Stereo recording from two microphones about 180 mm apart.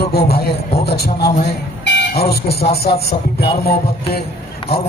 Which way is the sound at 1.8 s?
60° left (ahead or behind).